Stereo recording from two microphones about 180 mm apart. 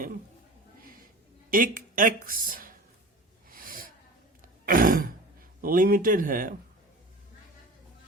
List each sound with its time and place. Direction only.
0.8 s a sound: 50° right (ahead or behind)
1.5 s a woman's voice: 50° right (ahead or behind)
3.5 s snort: 50° right (ahead or behind)
4.6 s throat clearing: 50° right (ahead or behind)
5.6 s speech: 50° right (ahead or behind)